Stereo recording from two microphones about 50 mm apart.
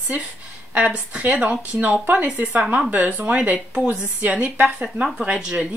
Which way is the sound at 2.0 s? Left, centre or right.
Right.